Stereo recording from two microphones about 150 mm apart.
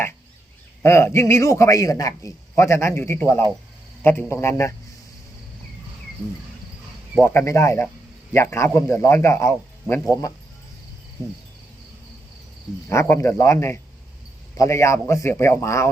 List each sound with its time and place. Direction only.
0.8 s a man's voice: 15° left (ahead or behind)
7.2 s speech: 15° left (ahead or behind)
12.9 s speech: 20° left (ahead or behind)